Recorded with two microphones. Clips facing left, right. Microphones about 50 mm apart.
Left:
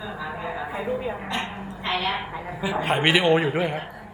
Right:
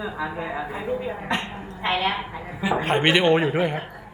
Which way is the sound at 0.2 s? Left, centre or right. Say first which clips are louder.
Right 1 dB; right.